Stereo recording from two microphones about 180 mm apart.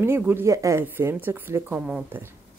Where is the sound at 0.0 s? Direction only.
15° right (ahead or behind).